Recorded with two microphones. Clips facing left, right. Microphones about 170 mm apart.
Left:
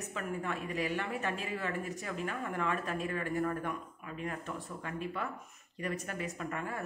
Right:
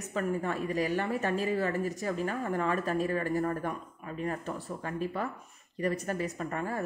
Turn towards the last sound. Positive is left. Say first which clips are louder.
# right 4 dB
turn(degrees=-35)  # may be behind; listen again after turning